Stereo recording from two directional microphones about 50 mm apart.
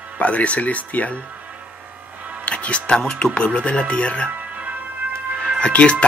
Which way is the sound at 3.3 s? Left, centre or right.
Left.